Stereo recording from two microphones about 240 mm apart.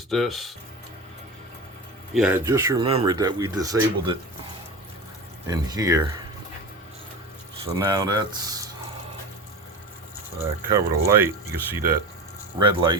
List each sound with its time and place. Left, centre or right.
0.1 s speech: centre
2.1 s speech: centre
5.5 s speech: centre
7.6 s speech: centre
10.7 s speech: centre